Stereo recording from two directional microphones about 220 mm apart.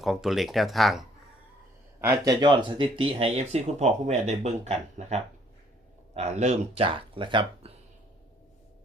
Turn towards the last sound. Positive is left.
turn(degrees=-20)  # may be behind; listen again after turning